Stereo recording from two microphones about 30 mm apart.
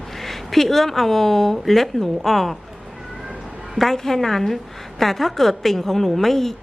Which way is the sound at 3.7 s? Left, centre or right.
Centre.